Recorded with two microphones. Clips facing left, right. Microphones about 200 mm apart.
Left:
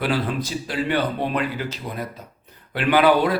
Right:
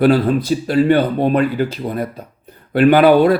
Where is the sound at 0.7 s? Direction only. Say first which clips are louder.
Right 10 dB; 45° right (ahead or behind).